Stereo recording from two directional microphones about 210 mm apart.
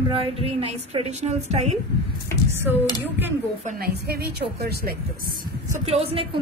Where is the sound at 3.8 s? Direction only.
50° right (ahead or behind).